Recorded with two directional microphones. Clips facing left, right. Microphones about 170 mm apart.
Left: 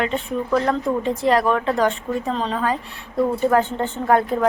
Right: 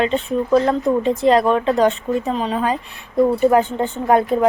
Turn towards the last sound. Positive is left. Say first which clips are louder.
# right 3 dB
turn(degrees=-20)  # may be behind; listen again after turning